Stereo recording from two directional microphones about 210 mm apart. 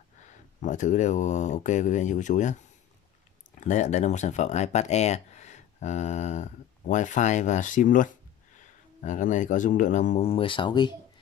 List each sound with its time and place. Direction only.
0.6 s speech: 35° left (ahead or behind)
3.5 s speech: 35° left (ahead or behind)